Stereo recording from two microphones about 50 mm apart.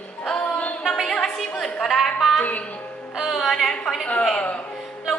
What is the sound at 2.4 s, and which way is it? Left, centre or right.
Music, left.